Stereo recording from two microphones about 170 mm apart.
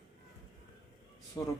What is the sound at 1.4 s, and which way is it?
Speech, 20° left (ahead or behind).